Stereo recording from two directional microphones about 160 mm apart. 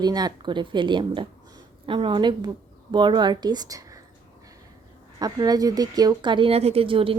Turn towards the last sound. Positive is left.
turn(degrees=-35)  # may be behind; listen again after turning